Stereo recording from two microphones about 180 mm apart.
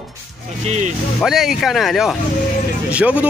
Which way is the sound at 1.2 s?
Centre (ahead or behind).